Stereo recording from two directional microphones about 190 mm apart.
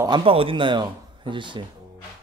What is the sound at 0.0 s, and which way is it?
Speech, 25° right (ahead or behind).